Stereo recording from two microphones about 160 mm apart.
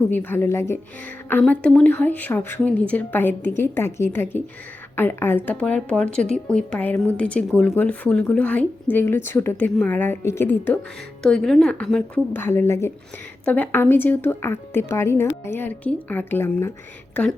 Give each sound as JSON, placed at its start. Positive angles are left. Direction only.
{"t": 0.1, "sound": "a woman's voice", "side_deg": 10}